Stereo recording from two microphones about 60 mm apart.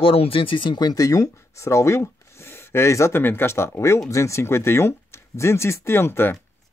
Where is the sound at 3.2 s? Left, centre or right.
Left.